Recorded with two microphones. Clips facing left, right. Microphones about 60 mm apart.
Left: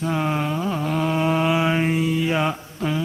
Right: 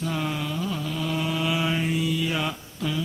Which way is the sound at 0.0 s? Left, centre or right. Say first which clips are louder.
Left 5 dB; left.